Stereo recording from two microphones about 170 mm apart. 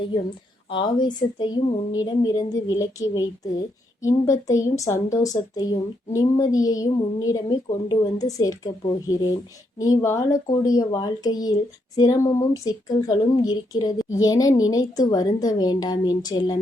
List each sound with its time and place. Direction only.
0.7 s a woman's voice: 25° left (ahead or behind)